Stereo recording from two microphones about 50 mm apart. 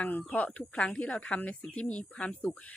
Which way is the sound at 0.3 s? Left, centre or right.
Left.